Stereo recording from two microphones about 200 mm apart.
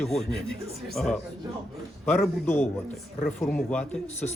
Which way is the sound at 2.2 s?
5° left (ahead or behind).